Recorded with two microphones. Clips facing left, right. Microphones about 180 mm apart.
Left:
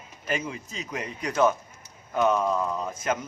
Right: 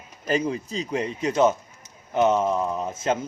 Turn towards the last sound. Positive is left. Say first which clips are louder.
# right 3 dB
turn(degrees=-25)  # may be behind; listen again after turning